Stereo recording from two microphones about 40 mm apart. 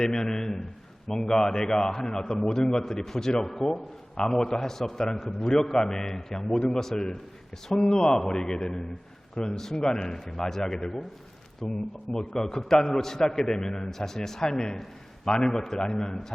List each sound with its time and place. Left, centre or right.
0.0 s a man's voice: centre